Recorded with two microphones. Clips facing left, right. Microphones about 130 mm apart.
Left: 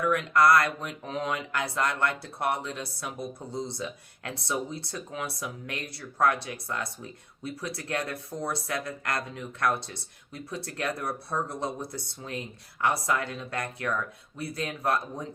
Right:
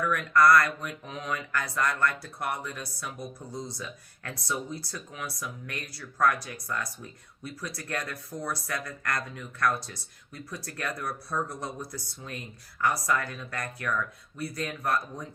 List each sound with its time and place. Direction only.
0.0 s speech: 25° left (ahead or behind)